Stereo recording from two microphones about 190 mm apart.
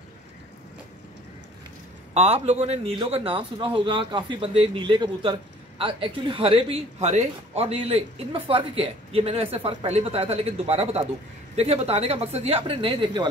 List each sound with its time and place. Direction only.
2.1 s a man's voice: 35° right (ahead or behind)